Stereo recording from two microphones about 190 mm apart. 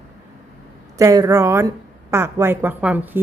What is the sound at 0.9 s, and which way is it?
A woman's voice, 15° right (ahead or behind).